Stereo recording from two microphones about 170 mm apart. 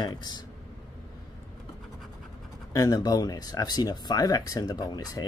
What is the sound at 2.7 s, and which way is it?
Speech, 20° left (ahead or behind).